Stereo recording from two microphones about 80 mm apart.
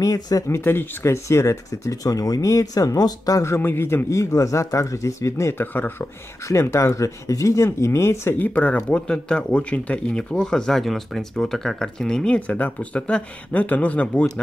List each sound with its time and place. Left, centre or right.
0.0 s speech: left
6.4 s speech: left
8.8 s speech: centre